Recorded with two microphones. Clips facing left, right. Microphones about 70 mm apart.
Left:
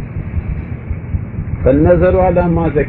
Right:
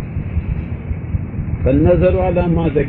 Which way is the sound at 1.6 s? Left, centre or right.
Left.